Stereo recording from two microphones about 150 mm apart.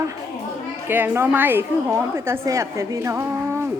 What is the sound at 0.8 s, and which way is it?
A woman's voice, 15° right (ahead or behind).